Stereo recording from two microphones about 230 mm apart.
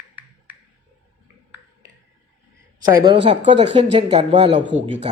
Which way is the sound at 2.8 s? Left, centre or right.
Centre.